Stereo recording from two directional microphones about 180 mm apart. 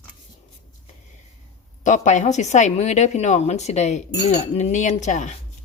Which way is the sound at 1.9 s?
40° left (ahead or behind).